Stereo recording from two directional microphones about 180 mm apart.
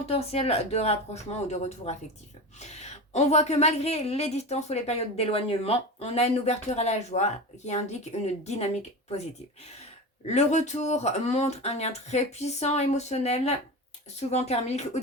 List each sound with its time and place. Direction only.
0.0 s a woman's voice: 35° left (ahead or behind)
10.2 s a woman's voice: 40° left (ahead or behind)